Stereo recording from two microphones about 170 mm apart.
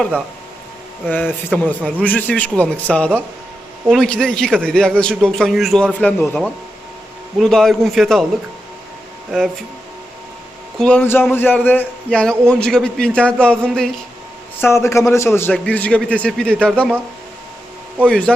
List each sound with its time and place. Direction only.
1.1 s a man's voice: 10° left (ahead or behind)
10.8 s a man's voice: 5° left (ahead or behind)
14.6 s a man's voice: 15° left (ahead or behind)
18.0 s a man's voice: 5° left (ahead or behind)